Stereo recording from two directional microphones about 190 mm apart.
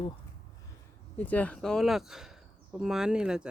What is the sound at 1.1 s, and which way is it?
Speech, 10° left (ahead or behind).